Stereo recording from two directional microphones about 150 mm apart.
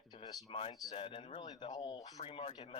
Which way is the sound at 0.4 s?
35° left (ahead or behind).